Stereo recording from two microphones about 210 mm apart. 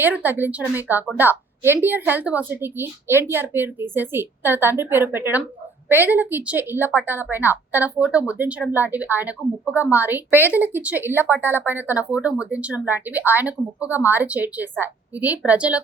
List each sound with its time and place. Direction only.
0.0 s speech: 10° right (ahead or behind)